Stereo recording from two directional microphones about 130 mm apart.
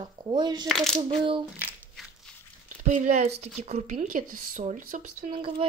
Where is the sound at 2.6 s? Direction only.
75° right (ahead or behind).